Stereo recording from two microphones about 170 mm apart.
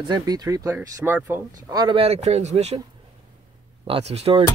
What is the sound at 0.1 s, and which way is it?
Speech, 25° right (ahead or behind).